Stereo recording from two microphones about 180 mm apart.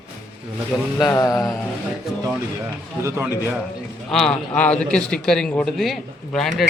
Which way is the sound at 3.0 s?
15° right (ahead or behind).